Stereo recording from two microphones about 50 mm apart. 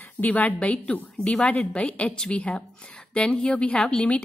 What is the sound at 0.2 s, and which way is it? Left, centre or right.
A woman's voice, left.